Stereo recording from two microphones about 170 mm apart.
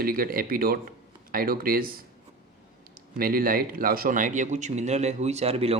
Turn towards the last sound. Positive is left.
turn(degrees=-35)  # may be behind; listen again after turning